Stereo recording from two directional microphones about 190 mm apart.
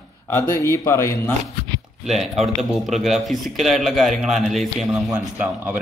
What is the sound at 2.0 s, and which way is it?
A man's voice, centre (ahead or behind).